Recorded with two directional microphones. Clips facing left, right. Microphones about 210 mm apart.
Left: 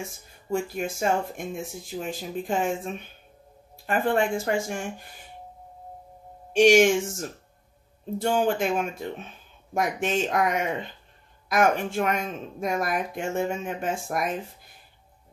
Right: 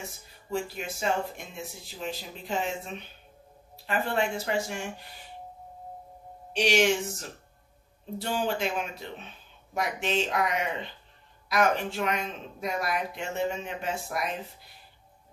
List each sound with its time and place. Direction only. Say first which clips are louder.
0.5 s speech: left 5 dB; 50° left (ahead or behind)
3.7 s speech: left 5 dB; 50° left (ahead or behind)
6.5 s speech: left 7 dB; 50° left (ahead or behind)